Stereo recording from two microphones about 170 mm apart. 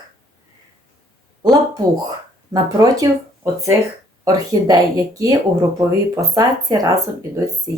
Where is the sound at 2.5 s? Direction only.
20° right (ahead or behind).